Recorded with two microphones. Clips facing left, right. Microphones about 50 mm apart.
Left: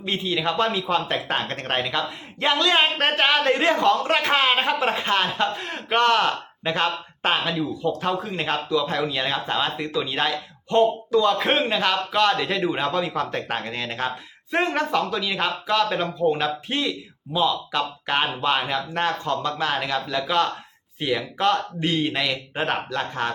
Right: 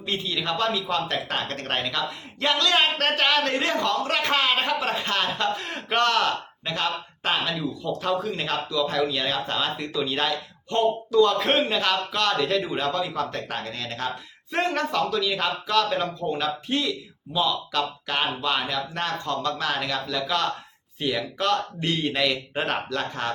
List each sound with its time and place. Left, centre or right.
0.0 s speech: centre
5.5 s speech: centre
6.1 s speech: centre